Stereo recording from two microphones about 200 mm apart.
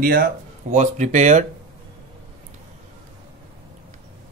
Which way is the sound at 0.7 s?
35° right (ahead or behind).